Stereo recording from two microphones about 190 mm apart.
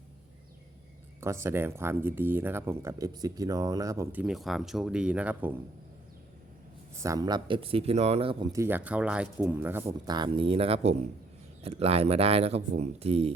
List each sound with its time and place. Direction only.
1.2 s speech: 15° right (ahead or behind)
7.0 s speech: 20° right (ahead or behind)
9.8 s speech: 25° right (ahead or behind)